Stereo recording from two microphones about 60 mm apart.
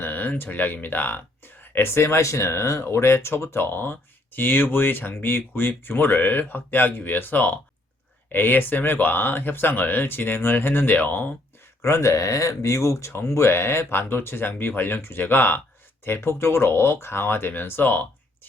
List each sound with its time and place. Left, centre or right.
0.0 s speech: left
11.8 s speech: left